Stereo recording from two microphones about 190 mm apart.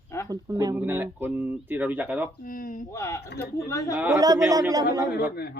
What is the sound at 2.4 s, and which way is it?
Speech, 50° left (ahead or behind).